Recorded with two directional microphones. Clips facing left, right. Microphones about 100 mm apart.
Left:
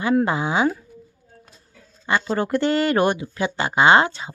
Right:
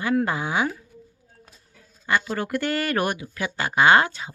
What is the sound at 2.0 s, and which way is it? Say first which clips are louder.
Speech: left 3 dB; 25° left (ahead or behind).